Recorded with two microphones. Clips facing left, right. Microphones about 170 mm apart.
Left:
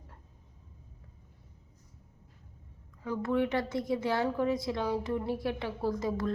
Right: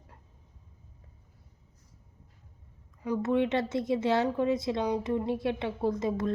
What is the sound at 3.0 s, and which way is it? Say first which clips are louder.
A woman's voice: right 3 dB; 20° right (ahead or behind).